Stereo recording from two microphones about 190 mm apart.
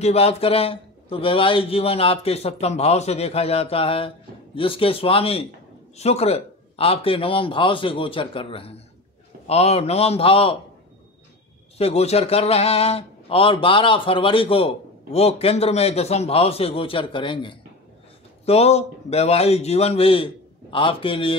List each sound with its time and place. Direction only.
0.0 s a man's voice: 30° left (ahead or behind)
11.8 s a man's voice: 35° left (ahead or behind)